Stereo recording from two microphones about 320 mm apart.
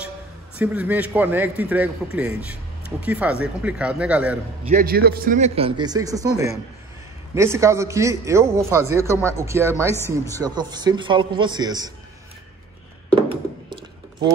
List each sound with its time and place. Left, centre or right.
0.6 s a man's voice: centre
4.6 s a man's voice: right; by 9.9 s centre
9.9 s speech: centre
10.3 s a man's voice: centre
13.3 s a sound: centre